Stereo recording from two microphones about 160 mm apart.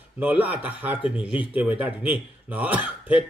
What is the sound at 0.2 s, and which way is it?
A man's voice, 10° right (ahead or behind).